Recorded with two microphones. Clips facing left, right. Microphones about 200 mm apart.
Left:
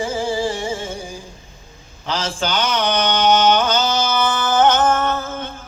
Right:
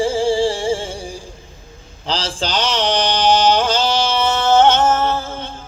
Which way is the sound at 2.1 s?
30° right (ahead or behind).